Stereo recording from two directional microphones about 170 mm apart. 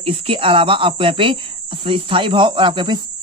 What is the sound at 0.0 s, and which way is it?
Speech, 35° right (ahead or behind).